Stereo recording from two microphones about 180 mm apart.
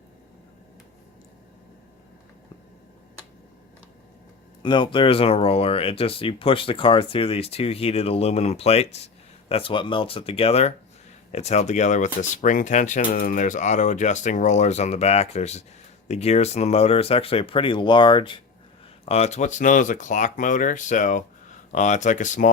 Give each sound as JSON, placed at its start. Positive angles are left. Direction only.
{"t": 4.6, "sound": "speech", "side_deg": 25}
{"t": 19.0, "sound": "speech", "side_deg": 35}